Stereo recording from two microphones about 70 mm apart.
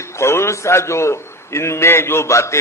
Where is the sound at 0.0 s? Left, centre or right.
Left.